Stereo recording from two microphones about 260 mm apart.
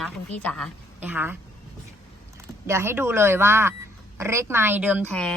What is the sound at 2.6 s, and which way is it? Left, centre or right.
A woman's voice, centre.